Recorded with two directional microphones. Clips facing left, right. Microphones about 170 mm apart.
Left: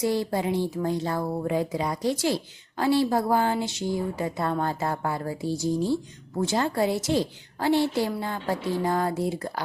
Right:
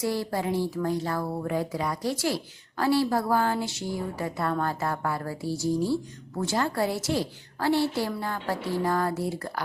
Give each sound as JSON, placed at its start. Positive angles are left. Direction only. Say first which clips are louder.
{"t": 0.0, "sound": "speech", "louder": "left 3 dB", "side_deg": 20}